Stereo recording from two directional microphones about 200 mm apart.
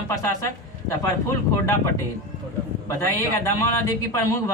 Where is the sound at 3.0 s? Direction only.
15° left (ahead or behind).